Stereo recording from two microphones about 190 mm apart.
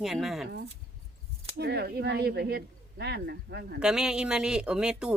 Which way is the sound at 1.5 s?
60° right (ahead or behind).